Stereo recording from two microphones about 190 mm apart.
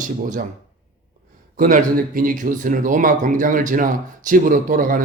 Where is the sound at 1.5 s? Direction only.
45° right (ahead or behind).